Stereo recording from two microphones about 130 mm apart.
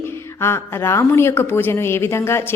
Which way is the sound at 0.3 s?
20° left (ahead or behind).